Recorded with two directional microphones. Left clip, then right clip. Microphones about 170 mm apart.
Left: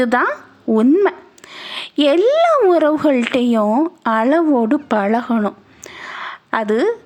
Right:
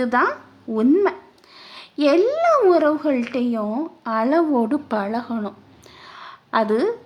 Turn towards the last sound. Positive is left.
turn(degrees=30)  # may be behind; listen again after turning